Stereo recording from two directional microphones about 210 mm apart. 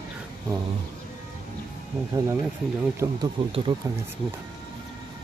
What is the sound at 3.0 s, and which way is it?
Speech, 20° right (ahead or behind).